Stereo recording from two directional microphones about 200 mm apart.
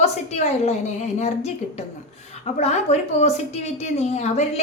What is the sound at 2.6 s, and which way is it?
A woman's voice, 35° left (ahead or behind).